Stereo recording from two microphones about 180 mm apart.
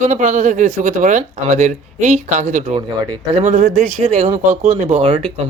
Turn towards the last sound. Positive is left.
turn(degrees=-35)  # may be behind; listen again after turning